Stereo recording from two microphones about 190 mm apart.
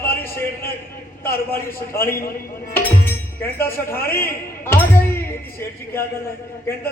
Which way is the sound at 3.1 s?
10° left (ahead or behind).